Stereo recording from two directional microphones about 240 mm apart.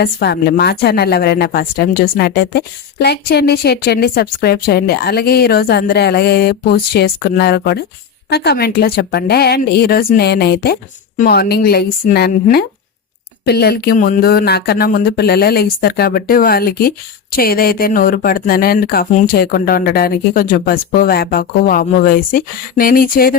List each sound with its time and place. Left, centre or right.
0.0 s a woman's voice: left